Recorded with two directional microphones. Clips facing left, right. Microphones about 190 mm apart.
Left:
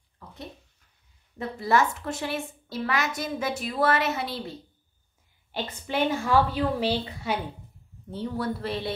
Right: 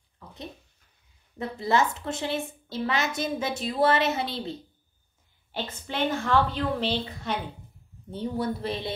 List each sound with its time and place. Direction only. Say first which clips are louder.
1.6 s a woman's voice: left 1 dB; 20° right (ahead or behind)
5.9 s a woman's voice: left 2 dB; 10° left (ahead or behind)
8.1 s speech: right 1 dB; 20° right (ahead or behind)